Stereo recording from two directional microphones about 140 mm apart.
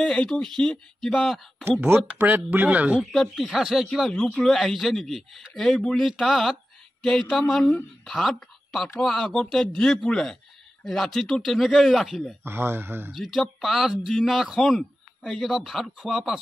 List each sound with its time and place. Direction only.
0.0 s speech: 5° left (ahead or behind)
1.6 s speech: 15° right (ahead or behind)
3.0 s speech: centre (ahead or behind)
12.4 s speech: 15° right (ahead or behind)
13.1 s speech: centre (ahead or behind)